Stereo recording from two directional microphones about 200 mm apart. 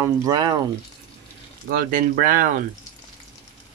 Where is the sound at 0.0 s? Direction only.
20° right (ahead or behind).